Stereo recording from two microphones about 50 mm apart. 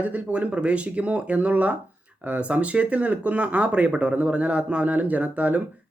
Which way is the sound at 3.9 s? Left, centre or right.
Centre.